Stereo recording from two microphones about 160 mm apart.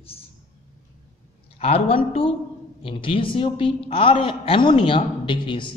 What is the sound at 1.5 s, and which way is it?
A man's voice, 40° left (ahead or behind).